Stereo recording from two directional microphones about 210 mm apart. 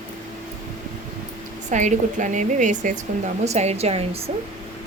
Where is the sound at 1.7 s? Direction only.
35° right (ahead or behind).